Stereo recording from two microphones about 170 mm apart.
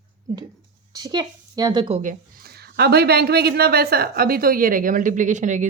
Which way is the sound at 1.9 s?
55° right (ahead or behind).